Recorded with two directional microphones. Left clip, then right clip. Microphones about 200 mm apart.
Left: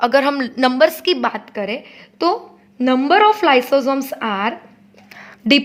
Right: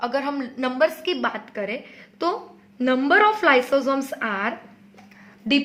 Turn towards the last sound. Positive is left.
turn(degrees=45)  # may be behind; listen again after turning